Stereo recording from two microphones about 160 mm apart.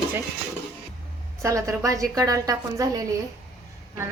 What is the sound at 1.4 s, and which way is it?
A woman's voice, 20° right (ahead or behind).